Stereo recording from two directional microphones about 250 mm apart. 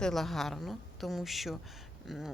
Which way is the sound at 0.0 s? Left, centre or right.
Centre.